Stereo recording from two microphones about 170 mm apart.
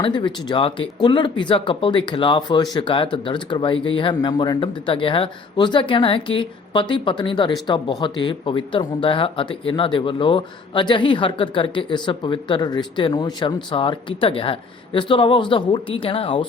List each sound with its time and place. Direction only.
0.0 s speech: 30° left (ahead or behind)